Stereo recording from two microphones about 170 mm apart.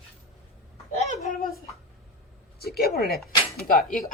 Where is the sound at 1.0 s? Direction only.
40° left (ahead or behind).